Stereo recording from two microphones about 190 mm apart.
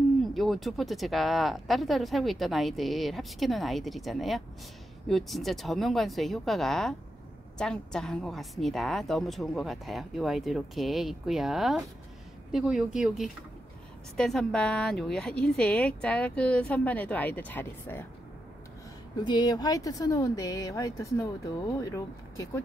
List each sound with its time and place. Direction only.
0.2 s a woman's voice: centre (ahead or behind)
19.2 s speech: 20° left (ahead or behind)